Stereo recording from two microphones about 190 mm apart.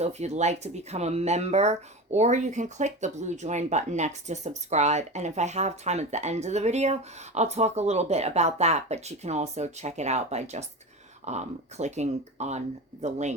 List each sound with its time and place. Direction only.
0.0 s speech: 35° right (ahead or behind)